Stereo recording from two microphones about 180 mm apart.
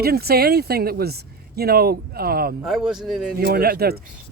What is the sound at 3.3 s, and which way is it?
Speech, 60° right (ahead or behind).